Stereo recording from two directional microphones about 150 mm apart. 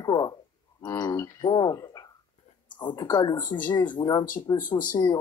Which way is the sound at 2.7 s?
30° left (ahead or behind).